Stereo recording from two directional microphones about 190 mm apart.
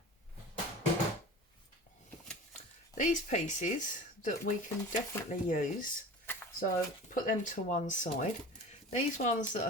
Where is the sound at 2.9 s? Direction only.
40° left (ahead or behind).